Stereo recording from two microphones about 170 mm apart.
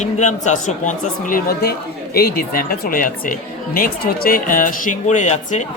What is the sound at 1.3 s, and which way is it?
Speech, 65° left (ahead or behind).